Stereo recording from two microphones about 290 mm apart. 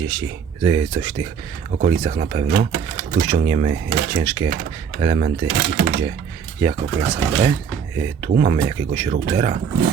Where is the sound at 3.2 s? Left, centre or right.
Centre.